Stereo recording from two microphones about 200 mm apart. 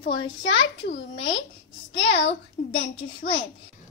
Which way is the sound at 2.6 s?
45° left (ahead or behind).